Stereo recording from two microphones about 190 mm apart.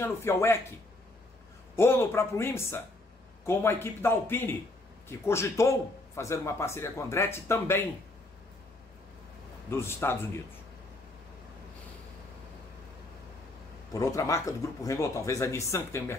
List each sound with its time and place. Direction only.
0.0 s a man's voice: 15° left (ahead or behind)
1.8 s a man's voice: 10° left (ahead or behind)
9.7 s a man's voice: 15° left (ahead or behind)
13.9 s a man's voice: 15° left (ahead or behind)